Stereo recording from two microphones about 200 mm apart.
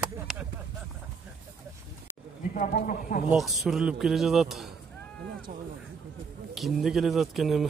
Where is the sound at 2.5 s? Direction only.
45° left (ahead or behind).